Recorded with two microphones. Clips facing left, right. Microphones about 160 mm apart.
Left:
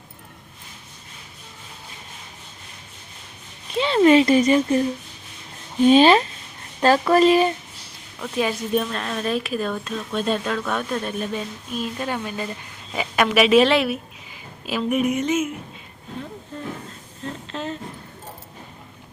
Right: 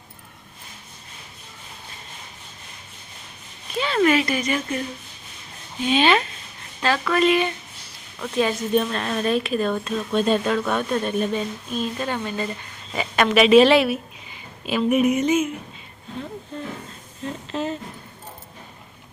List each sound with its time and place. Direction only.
3.8 s speech: 25° left (ahead or behind)
5.8 s speech: 40° left (ahead or behind)
8.2 s speech: 5° left (ahead or behind)
17.5 s speech: 5° right (ahead or behind)